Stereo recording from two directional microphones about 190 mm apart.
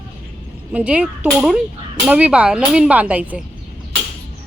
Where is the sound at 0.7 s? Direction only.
5° right (ahead or behind).